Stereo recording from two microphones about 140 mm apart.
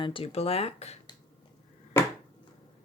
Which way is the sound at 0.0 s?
40° left (ahead or behind).